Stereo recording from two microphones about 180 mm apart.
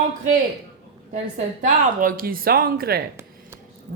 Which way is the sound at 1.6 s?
45° right (ahead or behind).